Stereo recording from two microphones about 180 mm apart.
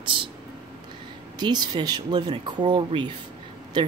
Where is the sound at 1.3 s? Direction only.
25° right (ahead or behind).